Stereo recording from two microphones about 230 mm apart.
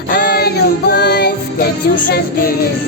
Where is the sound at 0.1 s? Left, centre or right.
Left.